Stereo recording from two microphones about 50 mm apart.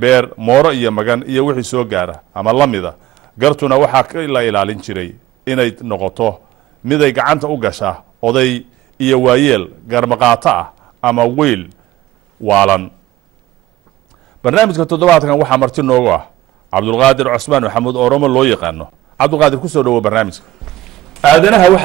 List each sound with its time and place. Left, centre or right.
0.0 s a man's voice: centre
12.4 s a man's voice: centre
14.4 s a man's voice: centre